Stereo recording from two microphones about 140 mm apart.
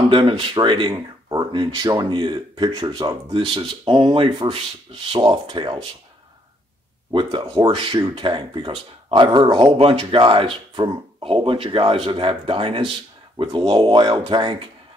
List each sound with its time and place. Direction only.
0.1 s speech: 35° right (ahead or behind)
7.1 s speech: 35° right (ahead or behind)